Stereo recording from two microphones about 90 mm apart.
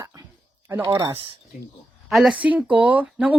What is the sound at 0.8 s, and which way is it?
Speech, 60° right (ahead or behind).